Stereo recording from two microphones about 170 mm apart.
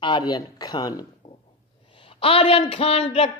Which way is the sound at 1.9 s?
30° left (ahead or behind).